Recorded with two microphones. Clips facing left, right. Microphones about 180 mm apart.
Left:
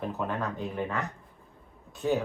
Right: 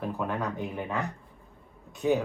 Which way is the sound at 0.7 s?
15° right (ahead or behind).